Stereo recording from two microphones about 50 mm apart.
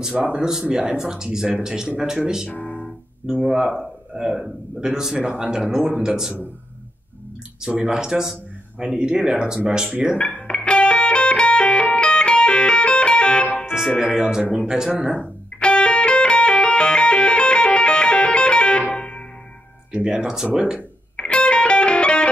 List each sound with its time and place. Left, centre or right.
0.4 s speech: centre
2.5 s music: left
3.4 s speech: centre
7.6 s speech: centre
10.1 s music: left
13.9 s speech: centre
15.0 s speech: right
15.6 s music: left
19.9 s speech: right
20.2 s speech: centre
21.2 s music: left